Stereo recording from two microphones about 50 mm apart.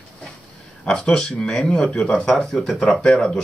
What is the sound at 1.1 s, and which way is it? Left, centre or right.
Speech, centre.